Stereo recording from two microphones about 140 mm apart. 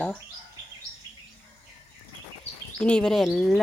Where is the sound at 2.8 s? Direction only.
5° left (ahead or behind).